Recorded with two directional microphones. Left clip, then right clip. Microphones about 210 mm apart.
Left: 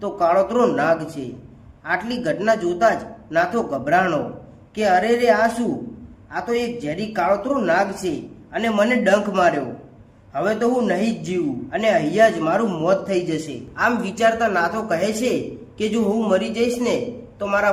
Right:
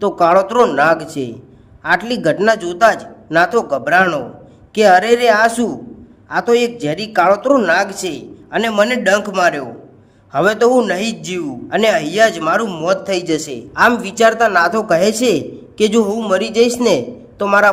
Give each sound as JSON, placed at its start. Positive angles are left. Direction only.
{"t": 0.0, "sound": "a man's voice", "side_deg": -50}